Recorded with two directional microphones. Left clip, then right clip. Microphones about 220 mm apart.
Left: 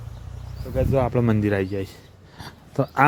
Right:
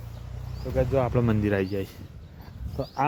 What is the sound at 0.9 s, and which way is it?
Speech, 20° left (ahead or behind).